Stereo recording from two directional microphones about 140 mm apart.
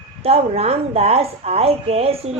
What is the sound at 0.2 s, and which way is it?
Speech, 45° right (ahead or behind).